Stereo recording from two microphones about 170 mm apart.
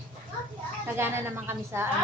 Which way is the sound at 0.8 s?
15° right (ahead or behind).